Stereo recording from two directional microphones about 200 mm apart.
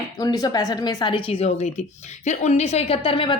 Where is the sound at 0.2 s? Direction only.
20° left (ahead or behind).